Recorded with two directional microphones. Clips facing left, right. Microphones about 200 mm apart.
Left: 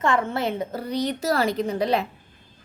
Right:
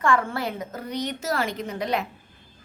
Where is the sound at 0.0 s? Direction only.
20° left (ahead or behind).